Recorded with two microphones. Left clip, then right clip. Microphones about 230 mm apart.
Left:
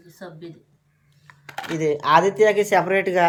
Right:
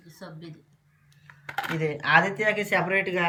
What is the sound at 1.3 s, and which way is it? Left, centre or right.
Speech, centre.